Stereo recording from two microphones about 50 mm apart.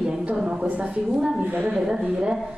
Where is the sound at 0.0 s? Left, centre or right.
Centre.